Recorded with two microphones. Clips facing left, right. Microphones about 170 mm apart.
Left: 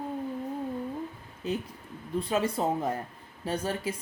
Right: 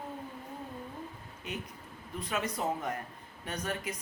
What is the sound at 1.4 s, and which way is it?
Speech, 35° left (ahead or behind).